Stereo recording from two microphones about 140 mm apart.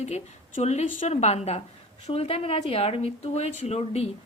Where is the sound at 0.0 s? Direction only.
55° left (ahead or behind).